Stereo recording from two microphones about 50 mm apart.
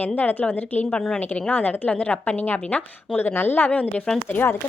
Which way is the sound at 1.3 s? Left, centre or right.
Left.